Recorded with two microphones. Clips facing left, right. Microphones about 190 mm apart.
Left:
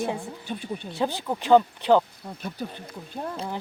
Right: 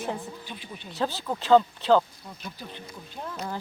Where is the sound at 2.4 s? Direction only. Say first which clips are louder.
Left 7 dB; 55° left (ahead or behind).